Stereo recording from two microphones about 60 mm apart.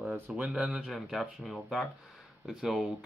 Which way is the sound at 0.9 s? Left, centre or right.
Centre.